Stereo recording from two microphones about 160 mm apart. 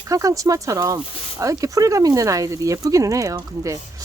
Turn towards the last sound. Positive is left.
turn(degrees=-20)  # may be behind; listen again after turning